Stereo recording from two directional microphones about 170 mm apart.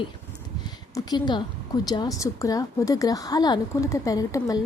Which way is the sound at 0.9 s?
25° left (ahead or behind).